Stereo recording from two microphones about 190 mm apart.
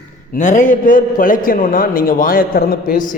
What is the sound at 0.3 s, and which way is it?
A man's voice, 40° left (ahead or behind).